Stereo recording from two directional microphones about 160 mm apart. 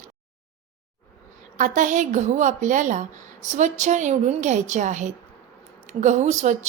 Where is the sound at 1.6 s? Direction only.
50° right (ahead or behind).